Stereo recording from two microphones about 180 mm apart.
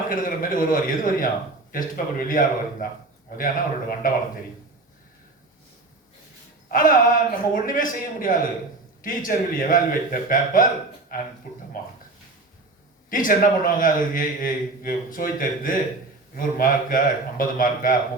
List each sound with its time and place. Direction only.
0.1 s a man's voice: 50° left (ahead or behind)
6.7 s a man's voice: 50° left (ahead or behind)
13.1 s a man's voice: 50° left (ahead or behind)